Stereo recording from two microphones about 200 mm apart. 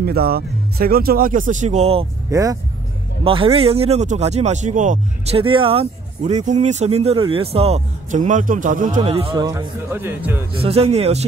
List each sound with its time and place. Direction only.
0.0 s speech: 50° right (ahead or behind); by 2.0 s 30° right (ahead or behind)
2.3 s speech: 15° right (ahead or behind)
3.3 s speech: 30° right (ahead or behind)
9.0 s a man's voice: 25° right (ahead or behind)
9.8 s speech: 10° right (ahead or behind)
10.5 s speech: 30° right (ahead or behind)